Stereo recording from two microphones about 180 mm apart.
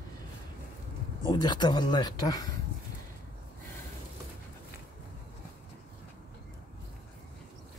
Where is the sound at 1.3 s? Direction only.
25° left (ahead or behind).